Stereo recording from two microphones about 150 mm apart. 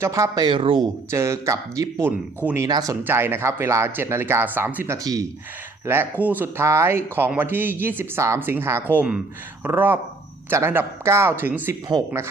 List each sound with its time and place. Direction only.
0.0 s speech: 20° right (ahead or behind)
1.1 s speech: 20° right (ahead or behind)
3.0 s speech: 15° right (ahead or behind)
11.9 s speech: 25° right (ahead or behind)